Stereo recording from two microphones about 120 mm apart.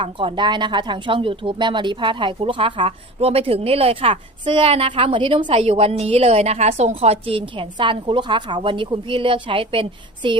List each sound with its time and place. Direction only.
0.0 s speech: 45° right (ahead or behind)